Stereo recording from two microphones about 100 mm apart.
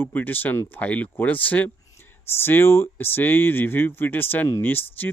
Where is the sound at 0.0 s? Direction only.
20° left (ahead or behind).